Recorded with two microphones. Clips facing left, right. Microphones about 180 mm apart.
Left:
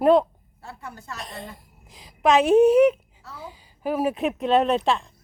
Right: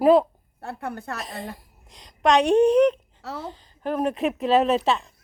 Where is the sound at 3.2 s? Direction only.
75° right (ahead or behind).